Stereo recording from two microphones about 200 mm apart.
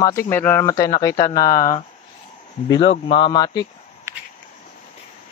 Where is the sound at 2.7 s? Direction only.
30° left (ahead or behind).